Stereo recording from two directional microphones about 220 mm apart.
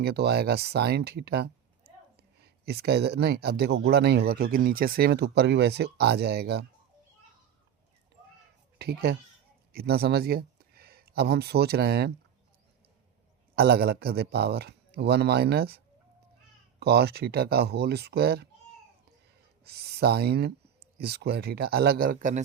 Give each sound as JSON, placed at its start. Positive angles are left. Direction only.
{"t": 0.0, "sound": "speech", "side_deg": -50}
{"t": 8.8, "sound": "speech", "side_deg": -45}
{"t": 13.6, "sound": "speech", "side_deg": -45}
{"t": 16.8, "sound": "speech", "side_deg": -45}
{"t": 19.6, "sound": "speech", "side_deg": -45}